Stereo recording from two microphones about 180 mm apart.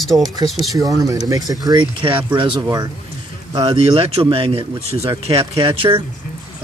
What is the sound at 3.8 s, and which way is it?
Speech, 35° right (ahead or behind).